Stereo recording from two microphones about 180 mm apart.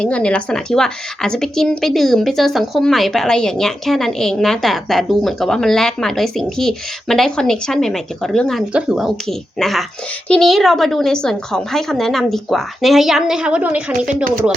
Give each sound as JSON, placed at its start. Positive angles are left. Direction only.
{"t": 0.0, "sound": "a woman's voice", "side_deg": 5}